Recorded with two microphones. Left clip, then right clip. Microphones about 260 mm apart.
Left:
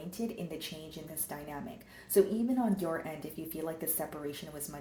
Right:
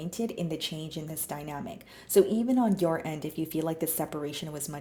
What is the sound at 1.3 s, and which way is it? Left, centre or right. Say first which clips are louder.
Speech: right 5 dB; right.